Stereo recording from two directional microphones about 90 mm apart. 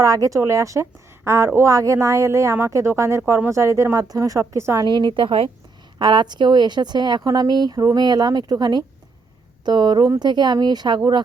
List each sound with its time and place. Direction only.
0.0 s a woman's voice: 40° right (ahead or behind)
4.8 s a woman's voice: 60° right (ahead or behind); by 5.5 s 80° right
6.0 s a woman's voice: 60° right (ahead or behind)